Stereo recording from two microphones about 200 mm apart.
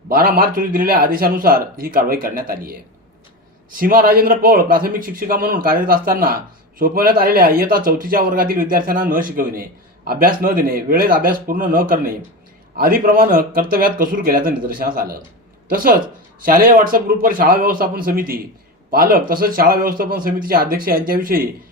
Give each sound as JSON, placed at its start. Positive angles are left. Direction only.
{"t": 0.1, "sound": "a man's voice", "side_deg": -45}